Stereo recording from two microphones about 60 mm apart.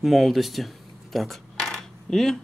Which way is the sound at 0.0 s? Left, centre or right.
Centre.